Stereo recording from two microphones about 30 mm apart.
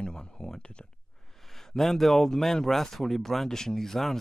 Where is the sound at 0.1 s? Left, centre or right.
Left.